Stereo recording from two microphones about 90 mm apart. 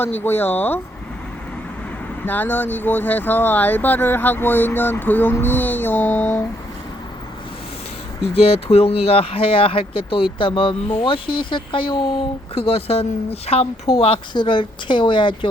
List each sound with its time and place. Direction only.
0.0 s speech: 25° left (ahead or behind)
2.2 s speech: 20° left (ahead or behind)
8.4 s speech: 90° left
10.3 s speech: 75° left (ahead or behind)